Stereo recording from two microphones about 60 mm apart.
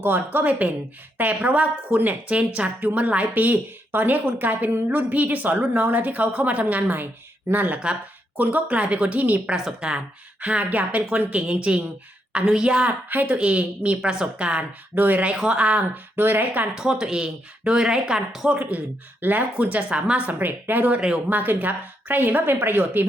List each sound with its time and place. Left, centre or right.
0.0 s a woman's voice: right
9.8 s a woman's voice: centre
13.1 s a woman's voice: right
14.9 s a woman's voice: right
16.1 s a woman's voice: right
16.7 s speech: centre
19.2 s a woman's voice: right
20.4 s a woman's voice: right